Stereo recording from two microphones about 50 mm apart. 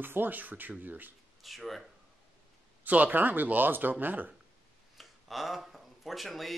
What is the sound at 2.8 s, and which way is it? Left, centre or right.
Speech, right.